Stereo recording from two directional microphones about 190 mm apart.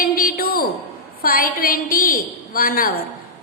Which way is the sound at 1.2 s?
50° left (ahead or behind).